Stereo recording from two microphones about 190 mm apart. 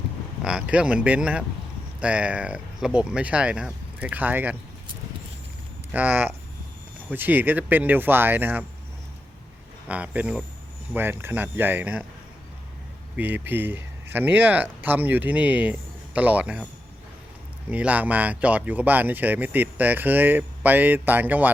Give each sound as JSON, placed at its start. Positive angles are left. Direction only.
{"t": 0.4, "sound": "speech", "side_deg": -5}
{"t": 5.9, "sound": "speech", "side_deg": -10}
{"t": 9.9, "sound": "speech", "side_deg": -5}
{"t": 13.1, "sound": "speech", "side_deg": -10}
{"t": 17.7, "sound": "speech", "side_deg": -10}